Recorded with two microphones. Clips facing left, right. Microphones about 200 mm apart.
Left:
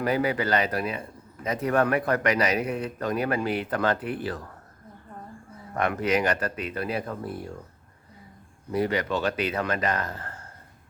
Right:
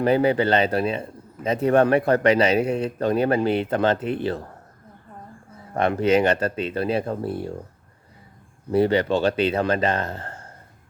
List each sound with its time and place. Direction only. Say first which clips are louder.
0.0 s speech: right 6 dB; 30° right (ahead or behind)
5.7 s speech: right 6 dB; 30° right (ahead or behind)
8.7 s speech: right 7 dB; 30° right (ahead or behind)